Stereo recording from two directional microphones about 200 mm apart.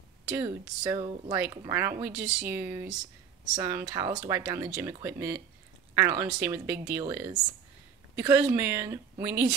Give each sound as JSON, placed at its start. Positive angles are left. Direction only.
{"t": 0.4, "sound": "speech", "side_deg": -15}